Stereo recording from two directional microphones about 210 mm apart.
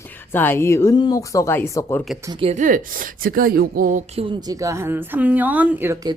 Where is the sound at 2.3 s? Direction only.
30° right (ahead or behind).